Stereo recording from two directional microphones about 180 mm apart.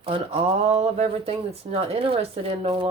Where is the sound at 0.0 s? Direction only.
30° right (ahead or behind).